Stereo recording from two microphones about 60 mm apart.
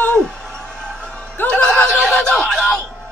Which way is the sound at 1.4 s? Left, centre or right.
Left.